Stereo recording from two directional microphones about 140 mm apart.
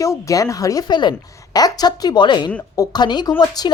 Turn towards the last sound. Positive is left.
turn(degrees=30)  # may be behind; listen again after turning